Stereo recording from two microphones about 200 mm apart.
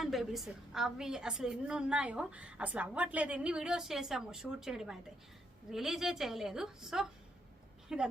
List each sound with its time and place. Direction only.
0.0 s a woman's voice: centre (ahead or behind)